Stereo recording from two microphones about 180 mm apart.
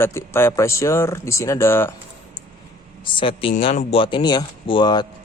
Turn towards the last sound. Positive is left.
turn(degrees=25)  # may be behind; listen again after turning